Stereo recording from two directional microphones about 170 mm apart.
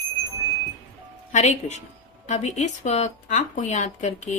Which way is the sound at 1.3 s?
45° left (ahead or behind).